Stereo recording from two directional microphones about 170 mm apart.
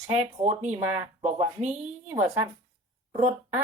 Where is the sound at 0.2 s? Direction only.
35° right (ahead or behind).